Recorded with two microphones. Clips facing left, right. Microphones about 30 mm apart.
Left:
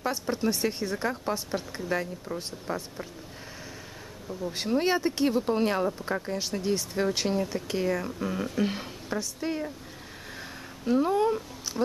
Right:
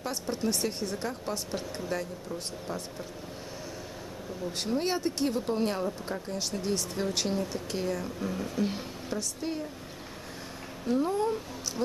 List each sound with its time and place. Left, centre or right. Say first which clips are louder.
0.1 s speech: left 3 dB; centre
1.9 s speech: left 5 dB; left
4.5 s speech: left 4 dB; centre
5.5 s speech: left 4 dB; left
6.3 s a woman's voice: even; centre
10.9 s speech: left 4 dB; left